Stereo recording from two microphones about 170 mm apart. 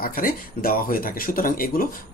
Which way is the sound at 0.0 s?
55° left (ahead or behind).